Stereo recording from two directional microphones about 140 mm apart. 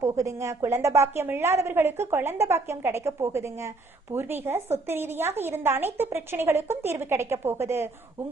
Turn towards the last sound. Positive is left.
turn(degrees=-20)  # may be behind; listen again after turning